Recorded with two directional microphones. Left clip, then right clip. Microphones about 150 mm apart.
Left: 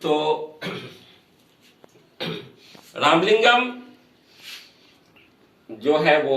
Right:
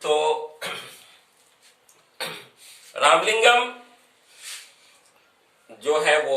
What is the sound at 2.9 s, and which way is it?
Speech, 10° right (ahead or behind).